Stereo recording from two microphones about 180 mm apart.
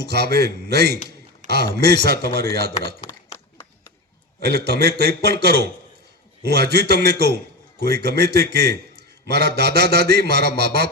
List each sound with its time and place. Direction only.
0.0 s a man's voice: 65° right (ahead or behind)
3.1 s a sound: 10° left (ahead or behind)
4.4 s a man's voice: 65° right (ahead or behind)